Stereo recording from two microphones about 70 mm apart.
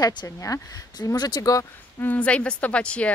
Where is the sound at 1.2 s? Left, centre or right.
Left.